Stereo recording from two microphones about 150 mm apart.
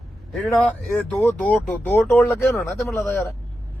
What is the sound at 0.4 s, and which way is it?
Speech, centre (ahead or behind).